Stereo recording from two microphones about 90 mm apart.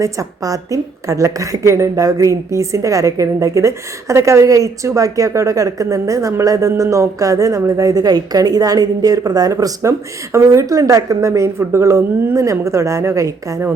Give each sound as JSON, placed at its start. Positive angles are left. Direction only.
{"t": 0.0, "sound": "a woman's voice", "side_deg": -40}